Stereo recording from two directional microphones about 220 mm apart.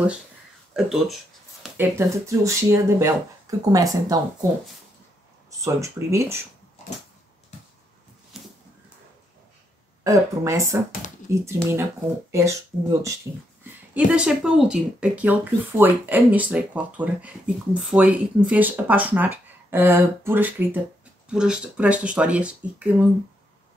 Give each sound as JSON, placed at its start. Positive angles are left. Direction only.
{"t": 0.7, "sound": "speech", "side_deg": 0}
{"t": 5.6, "sound": "speech", "side_deg": -15}
{"t": 10.0, "sound": "speech", "side_deg": -15}
{"t": 13.7, "sound": "speech", "side_deg": -5}